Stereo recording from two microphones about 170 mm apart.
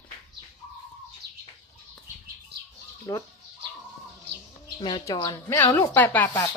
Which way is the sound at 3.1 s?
15° left (ahead or behind).